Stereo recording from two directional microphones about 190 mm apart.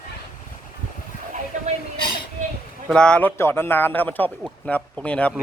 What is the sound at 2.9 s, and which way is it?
A man's voice, 5° left (ahead or behind).